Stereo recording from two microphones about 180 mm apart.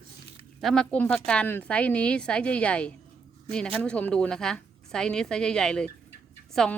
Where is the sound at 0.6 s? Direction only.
5° left (ahead or behind).